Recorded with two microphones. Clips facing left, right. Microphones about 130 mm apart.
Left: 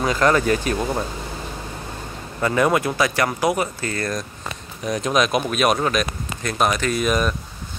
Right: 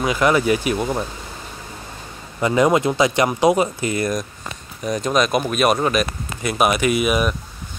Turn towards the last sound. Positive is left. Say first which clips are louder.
# right 2 dB
turn(degrees=-10)  # may be behind; listen again after turning